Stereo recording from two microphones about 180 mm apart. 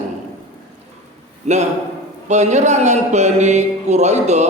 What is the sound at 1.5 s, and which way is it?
A man's voice, 40° right (ahead or behind).